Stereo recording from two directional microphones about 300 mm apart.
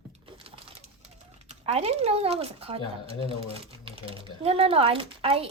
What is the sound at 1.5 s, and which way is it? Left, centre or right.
Speech, right.